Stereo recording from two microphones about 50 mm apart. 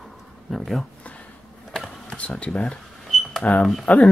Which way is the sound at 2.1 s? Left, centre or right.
Left.